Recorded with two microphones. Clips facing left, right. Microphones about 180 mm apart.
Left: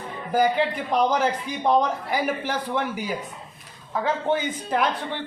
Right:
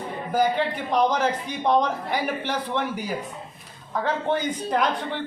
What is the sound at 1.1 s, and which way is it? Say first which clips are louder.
A man's voice: left 1 dB; 10° left (ahead or behind).